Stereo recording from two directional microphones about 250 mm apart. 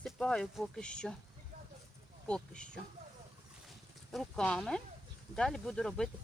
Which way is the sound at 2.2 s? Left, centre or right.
Centre.